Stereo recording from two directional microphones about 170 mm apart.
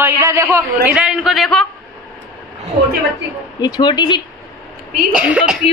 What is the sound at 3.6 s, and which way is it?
Speech, 25° left (ahead or behind).